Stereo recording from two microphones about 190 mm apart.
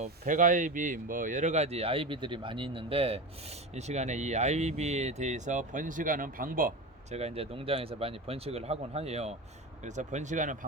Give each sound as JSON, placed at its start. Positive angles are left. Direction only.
{"t": 0.0, "sound": "speech", "side_deg": -40}
{"t": 7.2, "sound": "speech", "side_deg": -30}